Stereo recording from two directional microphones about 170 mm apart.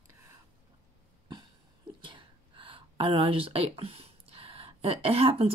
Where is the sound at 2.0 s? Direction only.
30° right (ahead or behind).